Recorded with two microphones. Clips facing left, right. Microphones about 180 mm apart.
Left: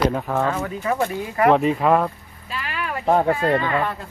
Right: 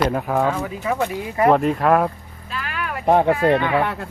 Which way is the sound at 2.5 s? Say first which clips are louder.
Even; centre (ahead or behind).